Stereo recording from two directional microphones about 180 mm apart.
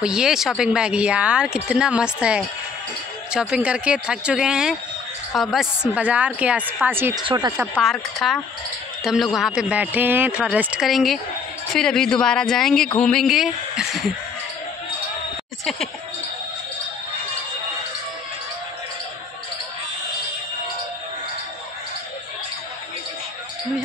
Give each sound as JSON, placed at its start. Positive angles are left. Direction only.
{"t": 0.0, "sound": "a woman's voice", "side_deg": -5}
{"t": 7.2, "sound": "speech", "side_deg": -20}
{"t": 7.5, "sound": "speech", "side_deg": -5}